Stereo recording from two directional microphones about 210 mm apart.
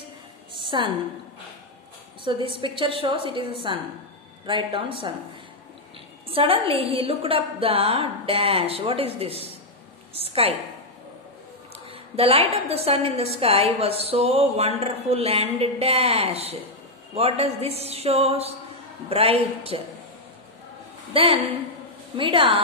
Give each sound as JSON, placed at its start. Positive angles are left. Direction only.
{"t": 0.6, "sound": "a woman's voice", "side_deg": -20}
{"t": 2.2, "sound": "a woman's voice", "side_deg": -25}
{"t": 6.2, "sound": "a woman's voice", "side_deg": -25}
{"t": 11.7, "sound": "a woman's voice", "side_deg": -25}
{"t": 21.1, "sound": "a woman's voice", "side_deg": -25}